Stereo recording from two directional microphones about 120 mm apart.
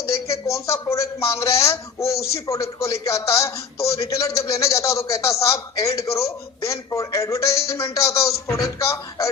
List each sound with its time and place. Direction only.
0.5 s a man's voice: 25° left (ahead or behind)